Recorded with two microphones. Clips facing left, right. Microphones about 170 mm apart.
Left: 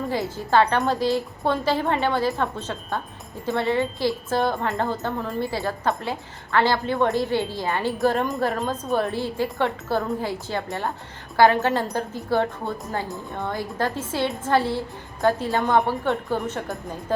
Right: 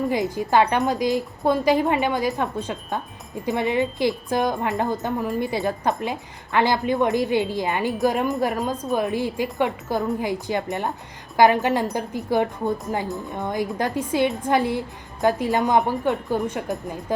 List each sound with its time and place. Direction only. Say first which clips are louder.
0.1 s a woman's voice: right 2 dB; 15° right (ahead or behind)